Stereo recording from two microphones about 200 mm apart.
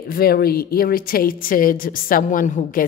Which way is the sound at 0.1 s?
50° left (ahead or behind).